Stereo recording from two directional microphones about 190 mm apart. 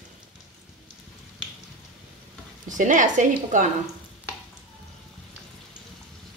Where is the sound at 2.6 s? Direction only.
40° right (ahead or behind).